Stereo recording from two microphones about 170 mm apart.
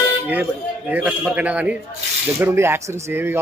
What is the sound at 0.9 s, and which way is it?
A man's voice, 10° right (ahead or behind).